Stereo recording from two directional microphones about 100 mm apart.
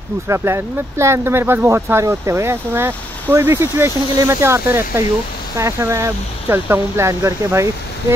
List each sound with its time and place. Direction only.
0.3 s speech: 30° right (ahead or behind)